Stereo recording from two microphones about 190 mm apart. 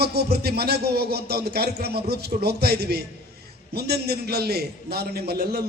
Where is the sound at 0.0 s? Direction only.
60° right (ahead or behind).